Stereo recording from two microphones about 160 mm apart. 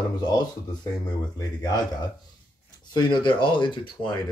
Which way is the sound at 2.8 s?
30° left (ahead or behind).